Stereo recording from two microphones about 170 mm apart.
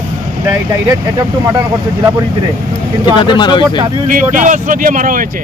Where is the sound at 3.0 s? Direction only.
25° left (ahead or behind).